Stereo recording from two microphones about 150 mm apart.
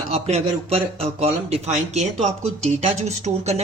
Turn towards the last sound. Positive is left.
turn(degrees=-45)  # may be behind; listen again after turning